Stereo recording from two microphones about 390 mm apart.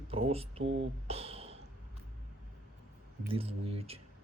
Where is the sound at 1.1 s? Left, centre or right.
Centre.